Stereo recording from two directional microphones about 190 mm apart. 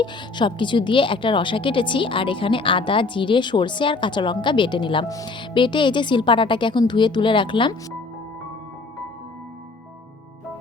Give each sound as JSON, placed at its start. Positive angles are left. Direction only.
{"t": 0.0, "sound": "a woman's voice", "side_deg": 25}